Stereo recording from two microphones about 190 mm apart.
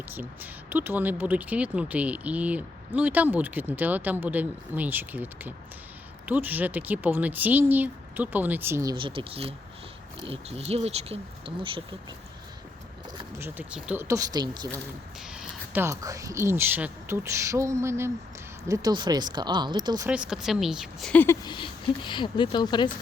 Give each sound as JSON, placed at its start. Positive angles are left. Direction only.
{"t": 0.7, "sound": "speech", "side_deg": -10}
{"t": 13.4, "sound": "speech", "side_deg": -10}
{"t": 15.3, "sound": "speech", "side_deg": -5}
{"t": 20.1, "sound": "speech", "side_deg": -5}
{"t": 21.4, "sound": "speech", "side_deg": 25}